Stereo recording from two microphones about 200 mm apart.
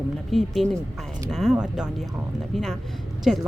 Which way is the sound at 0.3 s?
Centre (ahead or behind).